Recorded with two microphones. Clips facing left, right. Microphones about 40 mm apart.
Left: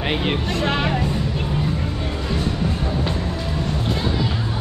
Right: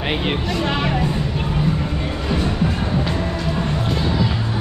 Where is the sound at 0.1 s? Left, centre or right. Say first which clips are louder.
Right 1 dB; centre.